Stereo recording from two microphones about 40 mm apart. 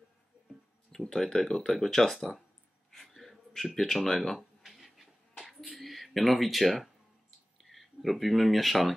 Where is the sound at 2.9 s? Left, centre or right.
Centre.